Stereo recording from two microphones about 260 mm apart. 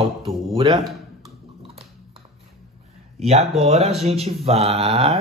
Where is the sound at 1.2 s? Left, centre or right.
Right.